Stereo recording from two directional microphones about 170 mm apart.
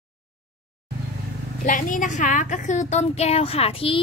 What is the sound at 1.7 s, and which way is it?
A woman's voice, 50° left (ahead or behind).